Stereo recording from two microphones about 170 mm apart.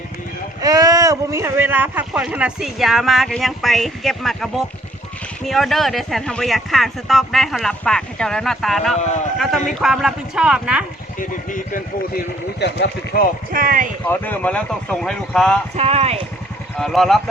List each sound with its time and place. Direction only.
0.6 s speech: 20° right (ahead or behind); by 9.0 s centre (ahead or behind)
9.0 s speech: 45° left (ahead or behind)
9.4 s speech: centre (ahead or behind)
11.2 s speech: 50° left (ahead or behind)
12.5 s speech: 85° left
13.5 s speech: 55° right (ahead or behind)
14.0 s speech: 10° left (ahead or behind)
15.7 s speech: 35° right (ahead or behind)
16.7 s speech: centre (ahead or behind)